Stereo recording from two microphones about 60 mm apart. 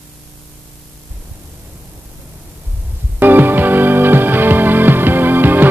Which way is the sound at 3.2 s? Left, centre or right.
Right.